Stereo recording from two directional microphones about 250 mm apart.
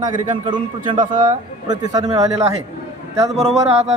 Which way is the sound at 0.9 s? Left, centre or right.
Right.